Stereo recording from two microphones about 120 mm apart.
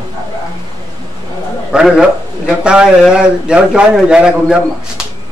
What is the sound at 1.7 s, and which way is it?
A man's voice, 5° right (ahead or behind).